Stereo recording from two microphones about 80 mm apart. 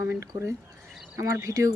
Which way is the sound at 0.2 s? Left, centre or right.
Right.